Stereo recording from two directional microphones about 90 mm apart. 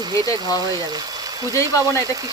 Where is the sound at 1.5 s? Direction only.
35° left (ahead or behind).